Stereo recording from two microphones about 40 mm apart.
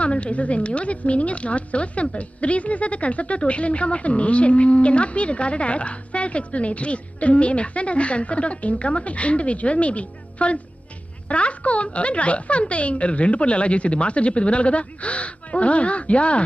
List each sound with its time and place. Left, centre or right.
0.0 s speech: left